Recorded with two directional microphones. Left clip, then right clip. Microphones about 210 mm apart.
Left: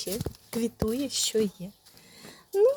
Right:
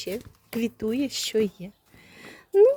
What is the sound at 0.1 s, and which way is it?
Speech, 25° right (ahead or behind).